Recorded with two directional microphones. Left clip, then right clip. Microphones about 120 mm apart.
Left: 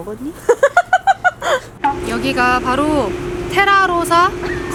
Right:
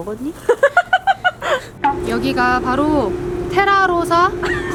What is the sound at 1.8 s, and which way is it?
Speech, centre (ahead or behind).